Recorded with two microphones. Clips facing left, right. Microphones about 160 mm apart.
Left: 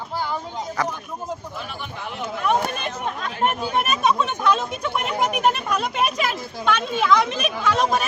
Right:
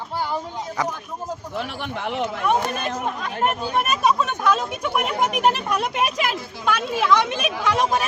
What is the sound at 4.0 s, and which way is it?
Speech, 5° right (ahead or behind).